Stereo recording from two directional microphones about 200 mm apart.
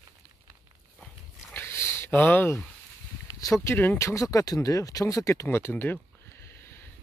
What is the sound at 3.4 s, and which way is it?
Speech, 15° left (ahead or behind).